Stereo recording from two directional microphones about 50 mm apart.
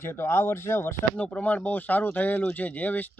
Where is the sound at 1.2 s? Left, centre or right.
Left.